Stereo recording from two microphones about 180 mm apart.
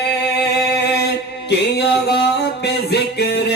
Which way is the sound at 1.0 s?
65° left (ahead or behind).